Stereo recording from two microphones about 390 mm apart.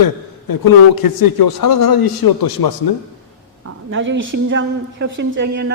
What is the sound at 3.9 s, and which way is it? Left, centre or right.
A woman's voice, right.